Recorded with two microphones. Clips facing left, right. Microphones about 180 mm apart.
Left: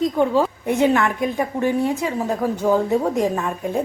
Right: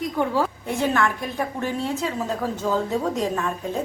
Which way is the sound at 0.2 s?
15° left (ahead or behind).